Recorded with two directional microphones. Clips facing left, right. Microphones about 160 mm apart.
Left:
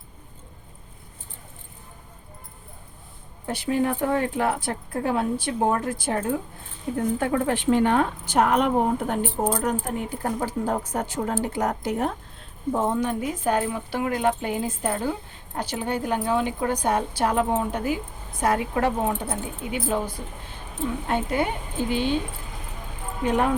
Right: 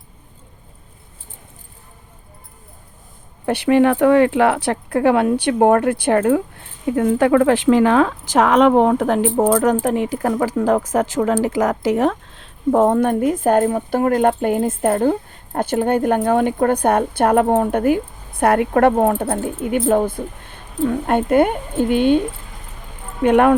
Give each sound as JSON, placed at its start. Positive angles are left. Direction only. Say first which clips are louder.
{"t": 3.4, "sound": "speech", "louder": "right 10 dB", "side_deg": -75}
{"t": 23.2, "sound": "speech", "louder": "right 10 dB", "side_deg": -65}